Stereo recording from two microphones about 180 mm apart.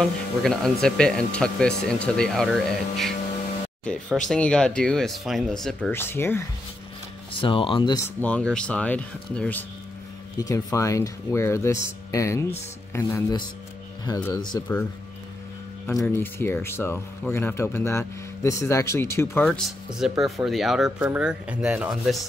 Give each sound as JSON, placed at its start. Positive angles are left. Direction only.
{"t": 0.0, "sound": "speech", "side_deg": 5}
{"t": 7.3, "sound": "speech", "side_deg": 30}
{"t": 8.2, "sound": "speech", "side_deg": 5}
{"t": 15.9, "sound": "speech", "side_deg": 15}